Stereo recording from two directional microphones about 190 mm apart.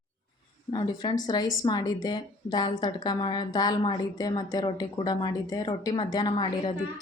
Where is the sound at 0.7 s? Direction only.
25° left (ahead or behind).